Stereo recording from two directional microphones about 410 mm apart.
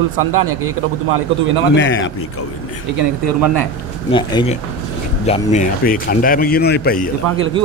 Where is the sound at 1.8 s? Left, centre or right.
Left.